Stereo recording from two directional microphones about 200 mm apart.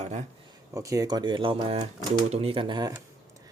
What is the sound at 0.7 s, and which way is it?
Speech, 15° right (ahead or behind).